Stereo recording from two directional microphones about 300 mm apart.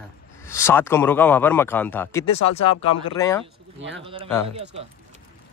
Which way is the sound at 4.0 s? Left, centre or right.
Centre.